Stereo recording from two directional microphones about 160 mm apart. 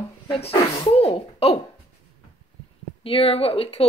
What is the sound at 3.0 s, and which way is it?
Speech, 35° left (ahead or behind).